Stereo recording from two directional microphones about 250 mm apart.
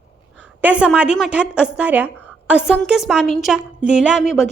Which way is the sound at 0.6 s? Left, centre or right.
Centre.